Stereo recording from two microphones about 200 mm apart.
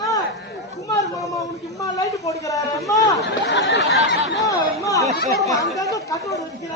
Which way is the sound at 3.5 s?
60° left (ahead or behind).